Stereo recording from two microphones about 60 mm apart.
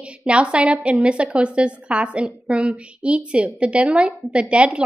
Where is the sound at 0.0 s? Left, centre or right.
Centre.